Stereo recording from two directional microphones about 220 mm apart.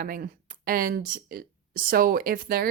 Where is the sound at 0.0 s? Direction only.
40° right (ahead or behind).